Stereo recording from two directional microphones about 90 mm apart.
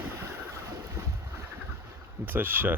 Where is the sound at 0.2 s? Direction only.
30° right (ahead or behind).